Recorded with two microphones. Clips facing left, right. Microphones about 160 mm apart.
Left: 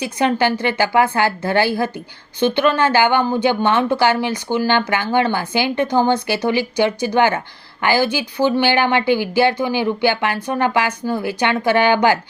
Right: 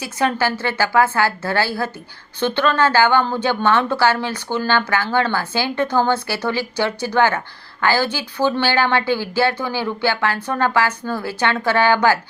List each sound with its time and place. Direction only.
0.0 s speech: 20° left (ahead or behind)